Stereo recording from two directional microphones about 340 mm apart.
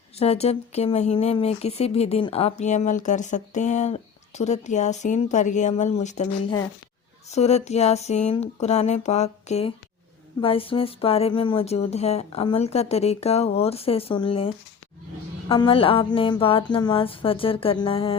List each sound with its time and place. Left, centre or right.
0.2 s speech: centre